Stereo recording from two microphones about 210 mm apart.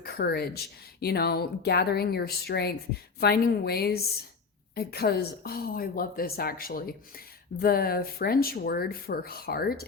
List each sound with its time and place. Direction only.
0.0 s speech: 50° left (ahead or behind)